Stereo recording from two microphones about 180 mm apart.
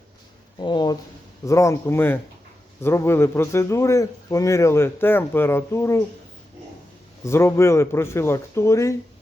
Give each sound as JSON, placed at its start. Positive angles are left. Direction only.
{"t": 0.6, "sound": "a man's voice", "side_deg": 25}
{"t": 7.3, "sound": "a man's voice", "side_deg": 15}